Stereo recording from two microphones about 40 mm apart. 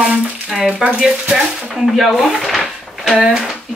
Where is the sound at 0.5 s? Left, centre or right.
Centre.